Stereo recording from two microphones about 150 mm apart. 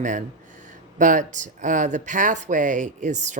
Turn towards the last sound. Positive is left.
turn(degrees=-55)  # may be behind; listen again after turning